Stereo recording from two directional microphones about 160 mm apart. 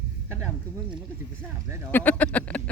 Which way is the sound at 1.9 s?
10° left (ahead or behind).